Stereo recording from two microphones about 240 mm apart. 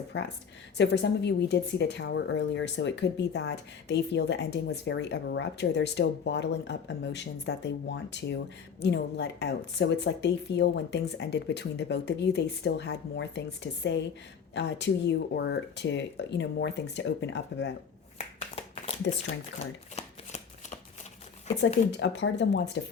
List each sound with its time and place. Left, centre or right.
0.1 s a woman's voice: left
18.2 s a sound: left
20.0 s shuffling cards: left
21.9 s a woman's voice: left